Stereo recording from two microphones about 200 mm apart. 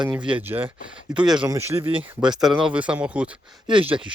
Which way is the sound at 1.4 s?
15° right (ahead or behind).